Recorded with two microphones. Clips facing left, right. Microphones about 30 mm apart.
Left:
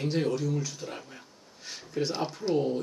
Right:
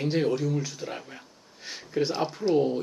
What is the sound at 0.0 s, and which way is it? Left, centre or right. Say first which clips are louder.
Speech: right 3 dB; centre.